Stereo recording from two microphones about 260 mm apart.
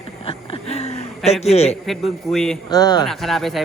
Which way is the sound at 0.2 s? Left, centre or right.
Left.